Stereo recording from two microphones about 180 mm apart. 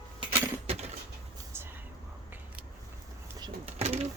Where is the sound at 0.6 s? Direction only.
35° right (ahead or behind).